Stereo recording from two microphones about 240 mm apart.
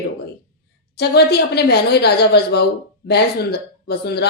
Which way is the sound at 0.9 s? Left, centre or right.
Left.